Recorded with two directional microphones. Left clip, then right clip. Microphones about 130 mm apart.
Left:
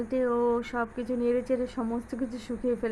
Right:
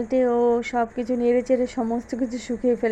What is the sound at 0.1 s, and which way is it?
A woman's voice, 25° right (ahead or behind).